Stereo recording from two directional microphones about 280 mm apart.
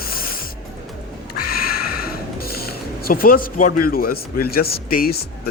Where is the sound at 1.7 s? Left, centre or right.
Left.